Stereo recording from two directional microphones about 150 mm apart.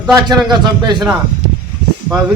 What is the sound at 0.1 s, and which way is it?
A man's voice, 30° right (ahead or behind).